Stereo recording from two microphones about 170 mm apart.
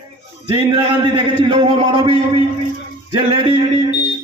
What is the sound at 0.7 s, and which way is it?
A man's voice, 25° right (ahead or behind).